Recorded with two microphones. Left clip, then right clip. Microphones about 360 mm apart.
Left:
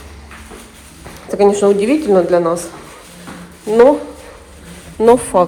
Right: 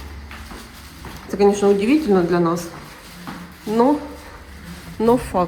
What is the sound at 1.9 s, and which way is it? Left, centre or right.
Speech, centre.